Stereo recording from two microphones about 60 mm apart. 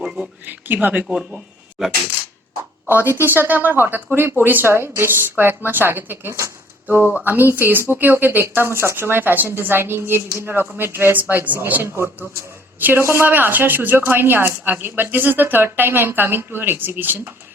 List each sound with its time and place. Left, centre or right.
0.4 s speech: right
1.0 s speech: centre
3.2 s speech: right
7.3 s speech: right